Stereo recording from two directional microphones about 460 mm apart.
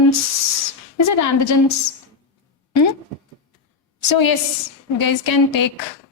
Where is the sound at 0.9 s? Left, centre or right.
Left.